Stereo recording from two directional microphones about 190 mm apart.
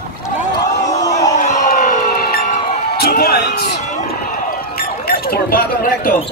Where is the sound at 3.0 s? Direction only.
50° left (ahead or behind).